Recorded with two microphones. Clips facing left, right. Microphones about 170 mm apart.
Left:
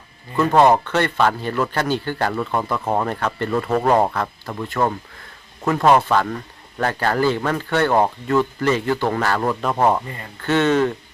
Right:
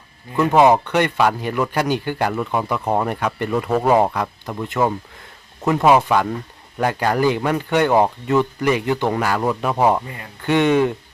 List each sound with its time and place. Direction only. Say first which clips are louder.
0.3 s a man's voice: right 1 dB; 10° right (ahead or behind)
3.1 s a man's voice: right 1 dB; 15° right (ahead or behind)
6.0 s a man's voice: right 1 dB; 15° right (ahead or behind)